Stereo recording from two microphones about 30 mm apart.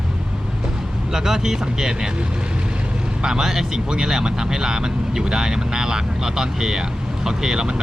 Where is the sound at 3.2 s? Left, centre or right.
Right.